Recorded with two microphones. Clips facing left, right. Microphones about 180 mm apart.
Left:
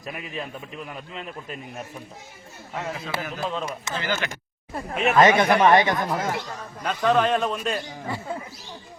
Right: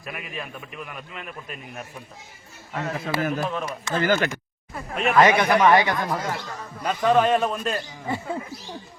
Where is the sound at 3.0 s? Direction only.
55° right (ahead or behind).